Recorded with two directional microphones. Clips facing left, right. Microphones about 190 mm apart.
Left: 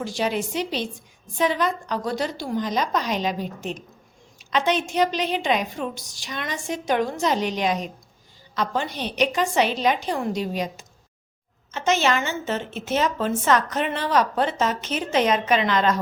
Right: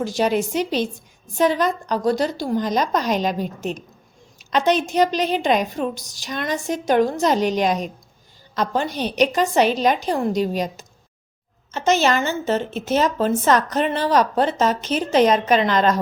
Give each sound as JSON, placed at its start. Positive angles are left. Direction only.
{"t": 0.0, "sound": "a woman's voice", "side_deg": -40}